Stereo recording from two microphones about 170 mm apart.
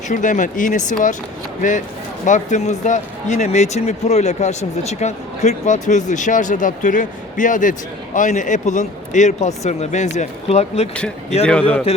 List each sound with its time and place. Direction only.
0.1 s speech: 50° left (ahead or behind)
10.9 s speech: 5° left (ahead or behind)
11.9 s music: 35° left (ahead or behind)